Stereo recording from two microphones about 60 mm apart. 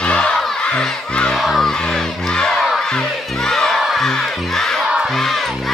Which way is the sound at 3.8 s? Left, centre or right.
Centre.